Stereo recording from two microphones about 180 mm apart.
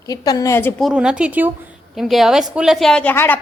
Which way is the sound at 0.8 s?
5° right (ahead or behind).